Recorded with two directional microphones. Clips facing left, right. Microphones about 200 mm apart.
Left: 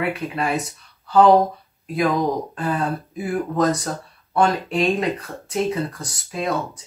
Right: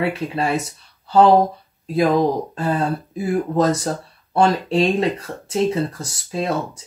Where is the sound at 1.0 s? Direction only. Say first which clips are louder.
Right 1 dB; 25° right (ahead or behind).